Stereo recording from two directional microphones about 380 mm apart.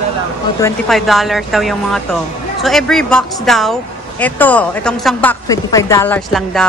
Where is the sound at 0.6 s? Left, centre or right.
Centre.